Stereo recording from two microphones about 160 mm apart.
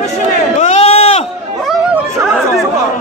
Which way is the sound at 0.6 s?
40° left (ahead or behind).